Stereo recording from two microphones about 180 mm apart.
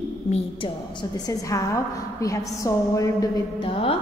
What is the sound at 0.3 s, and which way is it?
A woman's voice, 30° left (ahead or behind).